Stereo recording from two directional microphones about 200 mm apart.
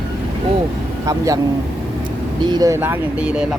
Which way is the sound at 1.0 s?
15° right (ahead or behind).